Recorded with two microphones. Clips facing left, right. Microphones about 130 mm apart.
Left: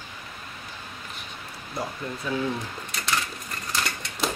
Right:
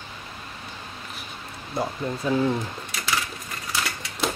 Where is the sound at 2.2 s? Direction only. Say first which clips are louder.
Right 5 dB; 30° right (ahead or behind).